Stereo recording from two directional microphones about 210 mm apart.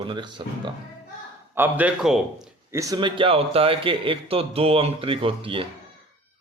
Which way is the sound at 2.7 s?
15° right (ahead or behind).